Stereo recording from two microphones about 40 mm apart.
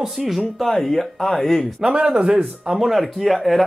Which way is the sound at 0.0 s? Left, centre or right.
Centre.